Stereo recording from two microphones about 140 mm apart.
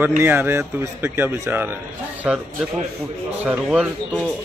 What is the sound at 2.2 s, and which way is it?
Speech, 5° right (ahead or behind).